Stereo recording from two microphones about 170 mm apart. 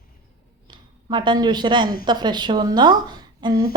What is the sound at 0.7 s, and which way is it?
A woman's voice, 25° right (ahead or behind).